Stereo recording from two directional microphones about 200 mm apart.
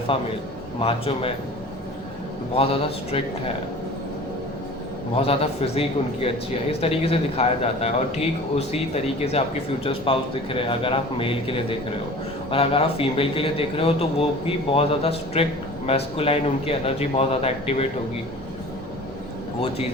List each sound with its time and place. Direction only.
0.1 s a man's voice: 30° left (ahead or behind)
2.6 s speech: 30° left (ahead or behind)
5.2 s a man's voice: 30° left (ahead or behind)
9.4 s a man's voice: 30° left (ahead or behind)